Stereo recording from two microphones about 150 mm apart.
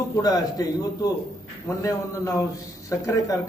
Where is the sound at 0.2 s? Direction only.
25° left (ahead or behind).